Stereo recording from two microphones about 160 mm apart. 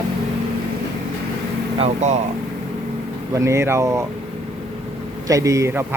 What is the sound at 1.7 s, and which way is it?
Speech, 40° right (ahead or behind).